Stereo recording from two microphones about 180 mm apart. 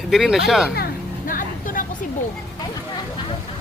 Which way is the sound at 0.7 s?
55° left (ahead or behind).